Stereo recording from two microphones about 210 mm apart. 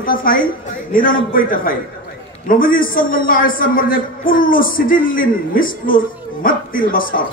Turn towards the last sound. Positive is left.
turn(degrees=40)  # may be behind; listen again after turning